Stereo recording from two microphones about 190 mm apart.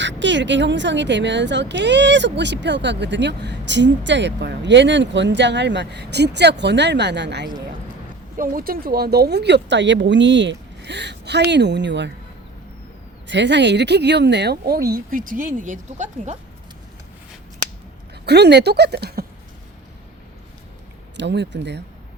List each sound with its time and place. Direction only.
0.0 s speech: 70° right (ahead or behind)
8.4 s speech: 50° right (ahead or behind); by 12.1 s 65° right (ahead or behind)
13.2 s speech: 65° right (ahead or behind); by 16.4 s 40° right (ahead or behind)
18.3 s speech: 60° right (ahead or behind)
21.2 s speech: 65° right (ahead or behind)